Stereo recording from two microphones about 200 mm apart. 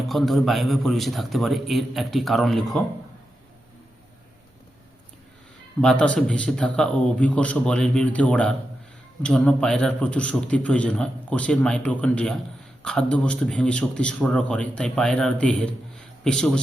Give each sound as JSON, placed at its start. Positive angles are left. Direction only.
{"t": 0.1, "sound": "a man's voice", "side_deg": 0}
{"t": 5.8, "sound": "a man's voice", "side_deg": 5}